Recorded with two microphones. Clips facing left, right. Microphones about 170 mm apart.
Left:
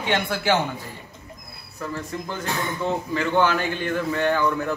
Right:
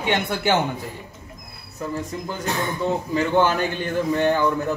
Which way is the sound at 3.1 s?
15° right (ahead or behind).